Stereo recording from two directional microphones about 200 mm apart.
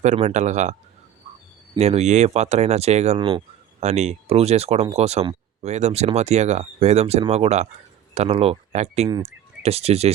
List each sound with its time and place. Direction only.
0.0 s speech: 35° right (ahead or behind)
1.8 s speech: 35° right (ahead or behind)